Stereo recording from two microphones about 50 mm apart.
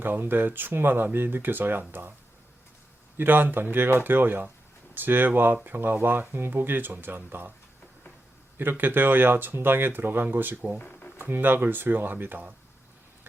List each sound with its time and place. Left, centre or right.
0.0 s speech: right
3.2 s speech: right
8.8 s speech: right